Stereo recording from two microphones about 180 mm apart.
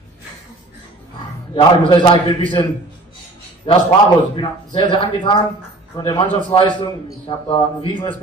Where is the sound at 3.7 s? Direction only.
30° left (ahead or behind).